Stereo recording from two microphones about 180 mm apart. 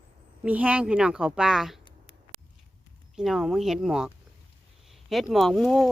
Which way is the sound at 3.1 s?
Centre (ahead or behind).